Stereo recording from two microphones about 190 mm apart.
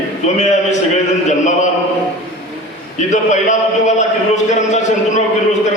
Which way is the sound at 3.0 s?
40° left (ahead or behind).